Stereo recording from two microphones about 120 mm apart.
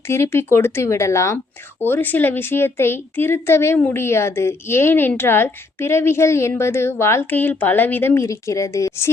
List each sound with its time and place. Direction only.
0.1 s a woman's voice: 20° left (ahead or behind)